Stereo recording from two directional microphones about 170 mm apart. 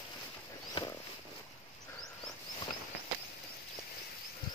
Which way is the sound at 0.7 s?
25° left (ahead or behind).